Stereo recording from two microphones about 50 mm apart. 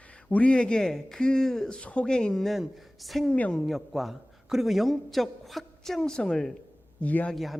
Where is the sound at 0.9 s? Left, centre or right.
Centre.